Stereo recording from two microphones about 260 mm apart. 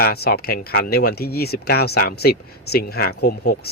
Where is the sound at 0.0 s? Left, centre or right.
Left.